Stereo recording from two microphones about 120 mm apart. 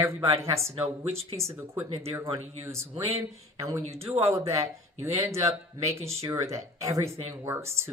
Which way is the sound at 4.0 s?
20° right (ahead or behind).